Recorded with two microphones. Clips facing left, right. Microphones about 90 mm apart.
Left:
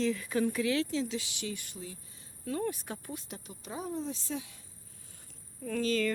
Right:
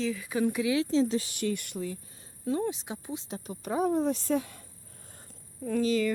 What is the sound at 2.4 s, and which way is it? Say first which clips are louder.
Speech: right 4 dB; 20° right (ahead or behind).